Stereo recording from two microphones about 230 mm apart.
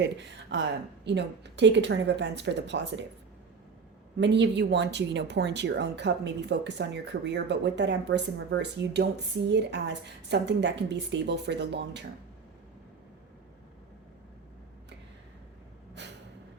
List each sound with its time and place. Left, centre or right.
0.0 s a woman's voice: right
4.2 s a woman's voice: right
16.0 s a sound: right